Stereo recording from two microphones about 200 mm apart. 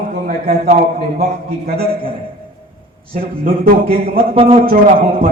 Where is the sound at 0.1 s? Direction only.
45° right (ahead or behind).